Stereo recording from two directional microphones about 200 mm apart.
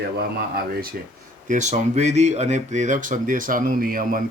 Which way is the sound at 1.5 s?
40° right (ahead or behind).